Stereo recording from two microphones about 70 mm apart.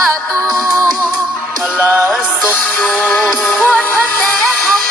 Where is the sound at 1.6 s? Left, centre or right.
Centre.